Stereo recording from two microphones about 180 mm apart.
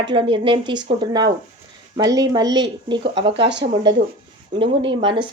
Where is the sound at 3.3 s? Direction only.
75° right (ahead or behind).